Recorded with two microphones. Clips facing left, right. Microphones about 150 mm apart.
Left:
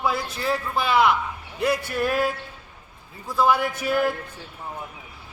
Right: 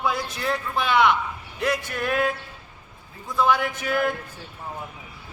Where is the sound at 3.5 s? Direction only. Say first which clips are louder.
Even; 5° left (ahead or behind).